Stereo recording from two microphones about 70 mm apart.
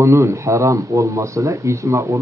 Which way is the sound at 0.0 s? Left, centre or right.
Right.